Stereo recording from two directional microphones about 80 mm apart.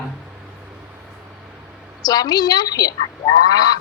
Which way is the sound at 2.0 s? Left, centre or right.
Left.